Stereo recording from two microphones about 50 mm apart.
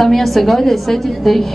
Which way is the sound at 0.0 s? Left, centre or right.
Centre.